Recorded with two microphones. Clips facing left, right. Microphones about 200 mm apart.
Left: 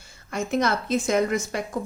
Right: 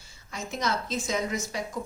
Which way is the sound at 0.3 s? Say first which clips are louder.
Left 7 dB; 60° left (ahead or behind).